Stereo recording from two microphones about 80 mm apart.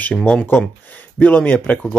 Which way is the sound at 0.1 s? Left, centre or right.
Centre.